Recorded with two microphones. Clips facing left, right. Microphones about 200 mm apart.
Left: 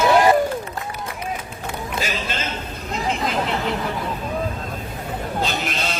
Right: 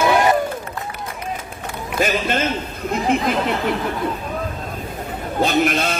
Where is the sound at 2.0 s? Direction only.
55° right (ahead or behind).